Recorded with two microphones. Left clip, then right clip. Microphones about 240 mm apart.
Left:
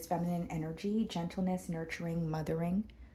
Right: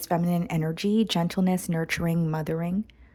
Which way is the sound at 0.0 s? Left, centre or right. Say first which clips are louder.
Right 9 dB; right.